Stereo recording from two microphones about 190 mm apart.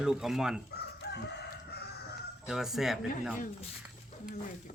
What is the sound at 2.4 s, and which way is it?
Speech, centre (ahead or behind).